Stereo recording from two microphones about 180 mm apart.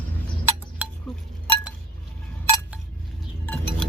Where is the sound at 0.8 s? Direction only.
10° right (ahead or behind).